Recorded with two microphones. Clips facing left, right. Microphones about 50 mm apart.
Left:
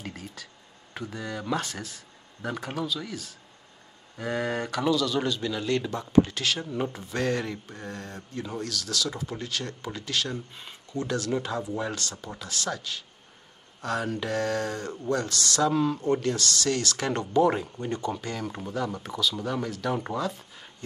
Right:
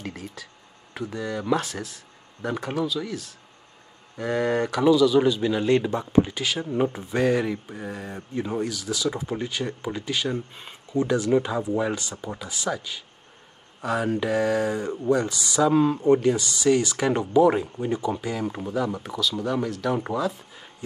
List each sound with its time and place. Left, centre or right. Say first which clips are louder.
0.0 s a sound: right 4 dB; centre
0.9 s speech: right 5 dB; centre
15.7 s speech: right 6 dB; right; by 20.7 s centre